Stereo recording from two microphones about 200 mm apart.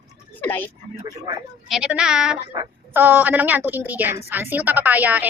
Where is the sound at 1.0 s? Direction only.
20° right (ahead or behind).